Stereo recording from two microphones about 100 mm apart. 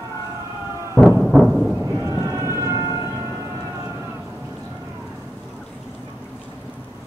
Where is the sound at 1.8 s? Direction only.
30° right (ahead or behind).